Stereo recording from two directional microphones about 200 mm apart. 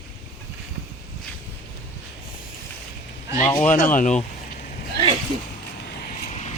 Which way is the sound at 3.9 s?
40° left (ahead or behind).